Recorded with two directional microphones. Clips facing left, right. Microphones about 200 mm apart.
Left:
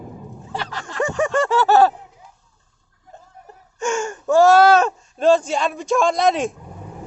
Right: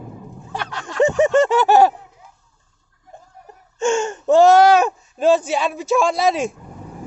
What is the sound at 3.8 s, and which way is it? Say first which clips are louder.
Speech: right 4 dB; 25° right (ahead or behind).